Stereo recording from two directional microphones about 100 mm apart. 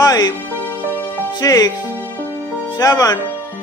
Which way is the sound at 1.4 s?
40° left (ahead or behind).